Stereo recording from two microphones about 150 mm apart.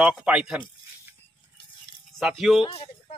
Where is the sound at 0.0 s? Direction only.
5° right (ahead or behind).